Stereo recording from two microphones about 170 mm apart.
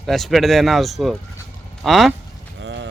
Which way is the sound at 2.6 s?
90° right.